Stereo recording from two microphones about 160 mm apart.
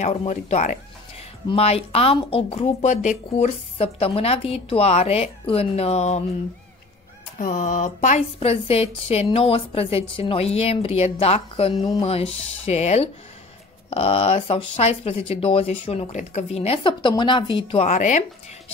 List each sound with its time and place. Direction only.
0.0 s a woman's voice: 40° left (ahead or behind)
7.3 s a woman's voice: 55° left (ahead or behind); by 17.8 s 30° left (ahead or behind)
17.8 s speech: 50° left (ahead or behind)